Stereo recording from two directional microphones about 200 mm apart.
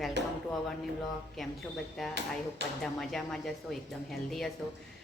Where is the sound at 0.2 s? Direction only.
60° right (ahead or behind).